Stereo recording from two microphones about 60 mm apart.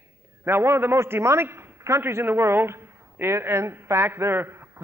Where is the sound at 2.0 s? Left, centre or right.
Right.